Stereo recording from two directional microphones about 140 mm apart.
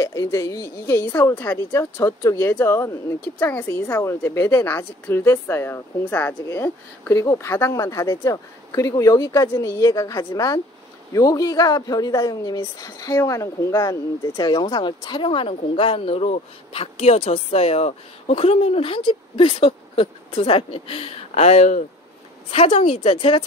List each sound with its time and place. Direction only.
0.0 s speech: 25° left (ahead or behind); by 21.8 s 55° left (ahead or behind)
22.5 s a woman's voice: 45° left (ahead or behind)